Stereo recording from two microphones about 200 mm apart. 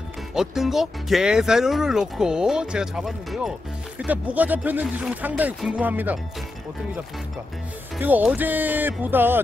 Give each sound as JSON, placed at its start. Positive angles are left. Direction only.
{"t": 0.3, "sound": "speech", "side_deg": 0}
{"t": 8.0, "sound": "speech", "side_deg": -5}